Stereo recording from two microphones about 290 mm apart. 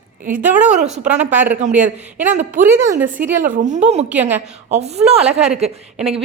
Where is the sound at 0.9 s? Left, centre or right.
Right.